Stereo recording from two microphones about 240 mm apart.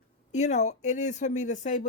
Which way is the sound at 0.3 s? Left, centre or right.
Left.